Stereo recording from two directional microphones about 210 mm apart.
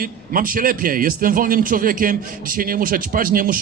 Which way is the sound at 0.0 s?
40° right (ahead or behind).